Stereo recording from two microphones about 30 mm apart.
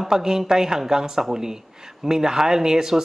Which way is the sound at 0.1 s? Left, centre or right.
Right.